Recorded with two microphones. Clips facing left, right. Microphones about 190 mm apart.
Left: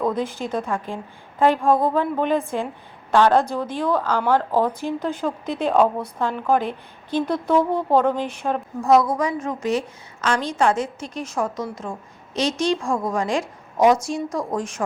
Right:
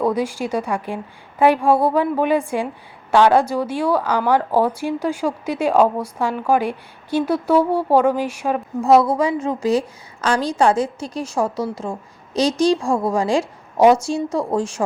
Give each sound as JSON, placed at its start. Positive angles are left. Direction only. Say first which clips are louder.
{"t": 0.0, "sound": "a woman's voice", "louder": "right 3 dB", "side_deg": -10}
{"t": 8.8, "sound": "a woman's voice", "louder": "right 3 dB", "side_deg": -25}